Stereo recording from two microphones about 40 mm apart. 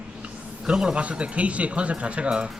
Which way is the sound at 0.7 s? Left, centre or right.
Centre.